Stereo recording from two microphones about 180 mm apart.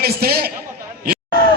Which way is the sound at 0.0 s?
60° right (ahead or behind).